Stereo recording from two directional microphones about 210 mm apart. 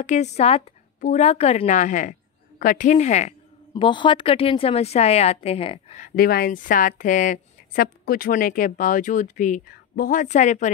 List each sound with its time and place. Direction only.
0.0 s a woman's voice: 35° left (ahead or behind)